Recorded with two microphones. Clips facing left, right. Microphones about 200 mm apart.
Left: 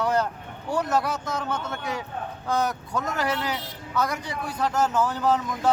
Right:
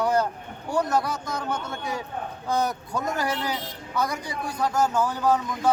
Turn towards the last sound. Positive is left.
turn(degrees=5)  # may be behind; listen again after turning